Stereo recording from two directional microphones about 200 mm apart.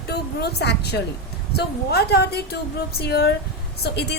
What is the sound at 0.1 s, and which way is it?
A woman's voice, 55° left (ahead or behind).